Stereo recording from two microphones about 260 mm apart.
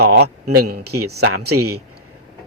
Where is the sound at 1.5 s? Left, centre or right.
Right.